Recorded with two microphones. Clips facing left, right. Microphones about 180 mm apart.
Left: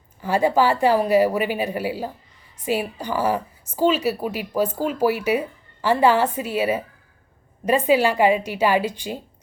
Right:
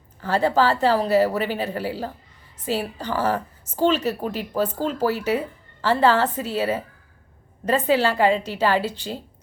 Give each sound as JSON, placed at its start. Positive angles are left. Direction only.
{"t": 0.2, "sound": "a woman's voice", "side_deg": 15}